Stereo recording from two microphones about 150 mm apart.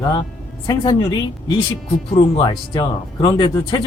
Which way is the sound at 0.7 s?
30° left (ahead or behind).